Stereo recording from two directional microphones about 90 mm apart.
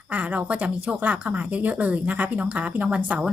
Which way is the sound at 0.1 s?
15° right (ahead or behind).